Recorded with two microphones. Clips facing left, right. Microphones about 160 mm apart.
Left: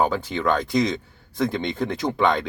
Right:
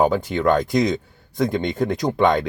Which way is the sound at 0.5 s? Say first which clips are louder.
Right 3 dB; 45° right (ahead or behind).